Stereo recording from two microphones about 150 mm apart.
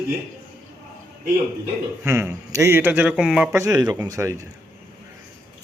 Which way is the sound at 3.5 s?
20° right (ahead or behind).